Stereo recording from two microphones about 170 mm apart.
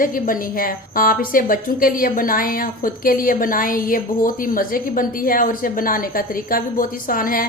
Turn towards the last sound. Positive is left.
turn(degrees=55)  # may be behind; listen again after turning